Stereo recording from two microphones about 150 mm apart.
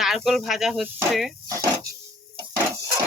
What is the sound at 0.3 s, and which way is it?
Speech, centre (ahead or behind).